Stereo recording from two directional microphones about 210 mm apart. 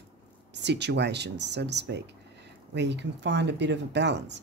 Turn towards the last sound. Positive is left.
turn(degrees=-55)  # may be behind; listen again after turning